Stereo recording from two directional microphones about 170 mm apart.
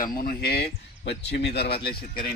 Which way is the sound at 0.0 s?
60° left (ahead or behind).